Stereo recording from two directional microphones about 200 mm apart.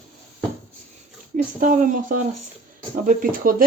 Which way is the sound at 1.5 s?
40° right (ahead or behind).